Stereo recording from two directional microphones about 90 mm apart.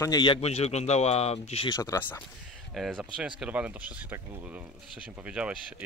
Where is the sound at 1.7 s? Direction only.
35° left (ahead or behind).